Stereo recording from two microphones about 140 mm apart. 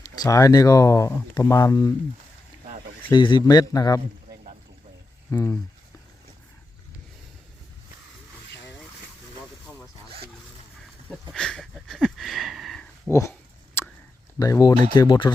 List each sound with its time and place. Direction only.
0.0 s speech: 25° left (ahead or behind)
3.1 s speech: 35° left (ahead or behind)
5.3 s speech: 20° left (ahead or behind)
11.3 s a sound: 5° left (ahead or behind)
13.1 s dog: 20° left (ahead or behind)
13.8 s a sound: 15° left (ahead or behind)
14.3 s speech: 25° left (ahead or behind)